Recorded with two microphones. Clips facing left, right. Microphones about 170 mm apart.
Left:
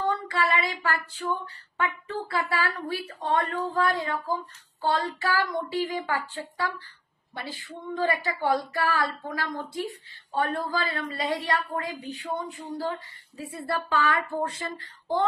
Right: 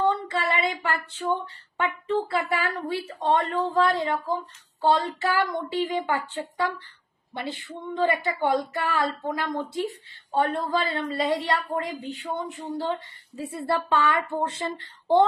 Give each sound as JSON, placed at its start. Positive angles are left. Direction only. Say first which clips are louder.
{"t": 0.0, "sound": "female singing", "louder": "right 2 dB", "side_deg": -25}
{"t": 1.8, "sound": "speech", "louder": "right 5 dB", "side_deg": -25}